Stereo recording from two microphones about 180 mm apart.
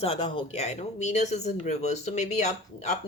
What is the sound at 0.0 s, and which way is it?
Speech, 35° left (ahead or behind).